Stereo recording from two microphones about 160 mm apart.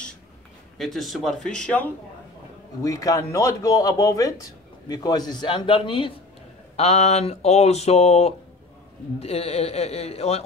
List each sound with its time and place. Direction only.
0.7 s speech: centre (ahead or behind)
2.8 s speech: 20° left (ahead or behind)
6.8 s a man's voice: 45° left (ahead or behind)